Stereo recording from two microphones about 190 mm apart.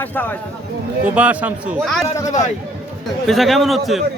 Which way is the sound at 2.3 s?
40° left (ahead or behind).